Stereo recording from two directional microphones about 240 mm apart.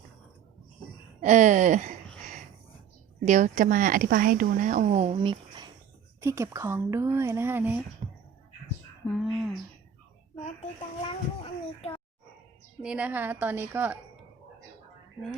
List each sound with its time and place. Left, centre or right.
1.2 s speech: right
3.2 s speech: right; by 7.8 s centre
8.0 s a sound: right
9.0 s speech: centre
11.0 s speech: left
12.8 s speech: centre